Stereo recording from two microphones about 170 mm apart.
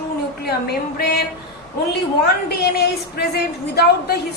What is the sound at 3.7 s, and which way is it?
Female singing, 65° left (ahead or behind).